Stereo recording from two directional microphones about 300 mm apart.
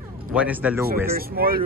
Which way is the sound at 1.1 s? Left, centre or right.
Right.